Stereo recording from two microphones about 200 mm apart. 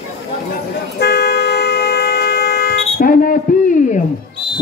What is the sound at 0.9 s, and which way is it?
Vehicle, 55° left (ahead or behind).